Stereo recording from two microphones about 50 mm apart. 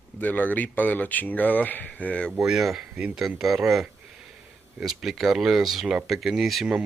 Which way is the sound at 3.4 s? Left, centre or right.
Centre.